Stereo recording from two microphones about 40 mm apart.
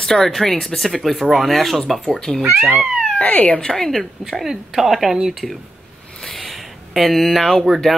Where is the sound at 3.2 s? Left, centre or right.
Left.